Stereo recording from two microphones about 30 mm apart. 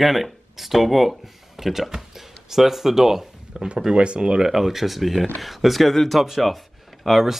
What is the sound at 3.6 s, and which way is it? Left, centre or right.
Speech, right.